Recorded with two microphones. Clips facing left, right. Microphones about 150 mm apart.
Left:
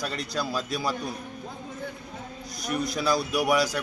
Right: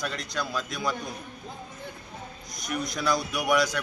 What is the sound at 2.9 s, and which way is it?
Speech, 5° left (ahead or behind).